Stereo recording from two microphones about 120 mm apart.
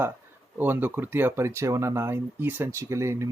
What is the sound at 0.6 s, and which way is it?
Speech, 15° right (ahead or behind).